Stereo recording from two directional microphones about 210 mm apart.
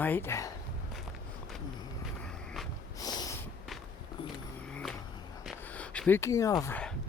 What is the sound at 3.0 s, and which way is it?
Snort, 15° left (ahead or behind).